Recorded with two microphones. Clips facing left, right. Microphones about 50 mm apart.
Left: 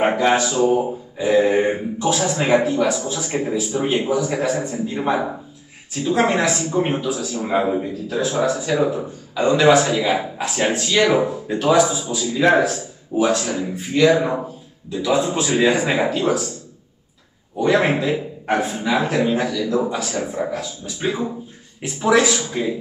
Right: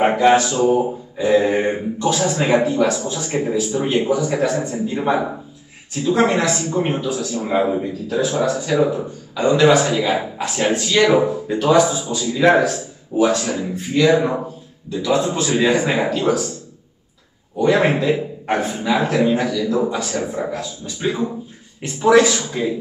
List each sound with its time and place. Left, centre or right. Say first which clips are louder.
0.0 s a man's voice: right 3 dB; centre
6.0 s a man's voice: right 1 dB; centre
10.1 s a man's voice: right 1 dB; centre
16.1 s a man's voice: right 1 dB; centre
17.7 s a man's voice: right 1 dB; centre